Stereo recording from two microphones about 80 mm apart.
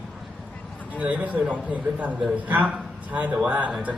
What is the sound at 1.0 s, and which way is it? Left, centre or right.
Speech, centre.